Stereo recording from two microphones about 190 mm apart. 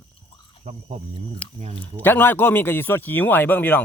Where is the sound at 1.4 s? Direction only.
5° left (ahead or behind).